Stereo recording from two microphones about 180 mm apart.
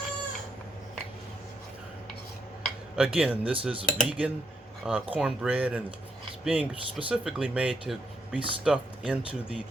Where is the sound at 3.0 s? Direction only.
5° right (ahead or behind).